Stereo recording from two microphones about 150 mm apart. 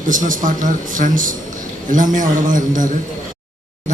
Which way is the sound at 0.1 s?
60° right (ahead or behind).